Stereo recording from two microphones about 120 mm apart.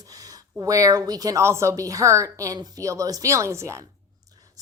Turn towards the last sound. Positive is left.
turn(degrees=-30)  # may be behind; listen again after turning